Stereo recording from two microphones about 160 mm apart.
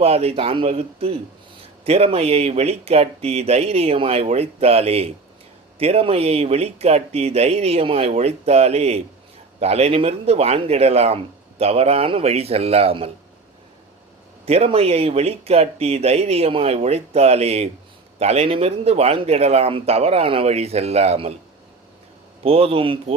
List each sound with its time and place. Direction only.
0.0 s speech: 40° right (ahead or behind)
14.4 s speech: 40° right (ahead or behind)
22.4 s speech: 35° right (ahead or behind)